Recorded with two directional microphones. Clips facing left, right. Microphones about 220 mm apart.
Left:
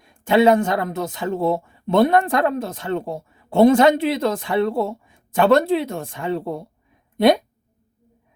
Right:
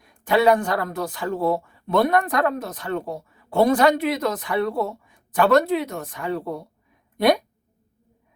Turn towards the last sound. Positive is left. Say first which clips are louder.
# left 3 dB
turn(degrees=25)  # may be behind; listen again after turning